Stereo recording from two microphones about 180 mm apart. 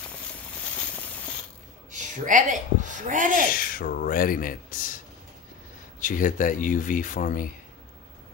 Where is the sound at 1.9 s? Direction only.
45° right (ahead or behind).